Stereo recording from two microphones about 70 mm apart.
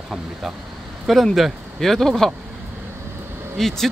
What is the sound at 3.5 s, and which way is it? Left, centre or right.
Speech, centre.